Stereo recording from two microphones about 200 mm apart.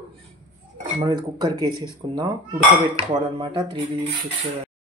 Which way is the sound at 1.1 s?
20° right (ahead or behind).